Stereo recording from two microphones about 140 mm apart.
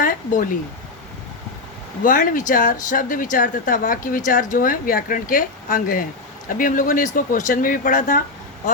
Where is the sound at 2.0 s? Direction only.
75° left (ahead or behind).